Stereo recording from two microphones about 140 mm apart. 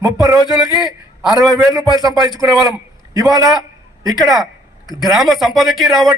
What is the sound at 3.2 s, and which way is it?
Speech, 25° right (ahead or behind).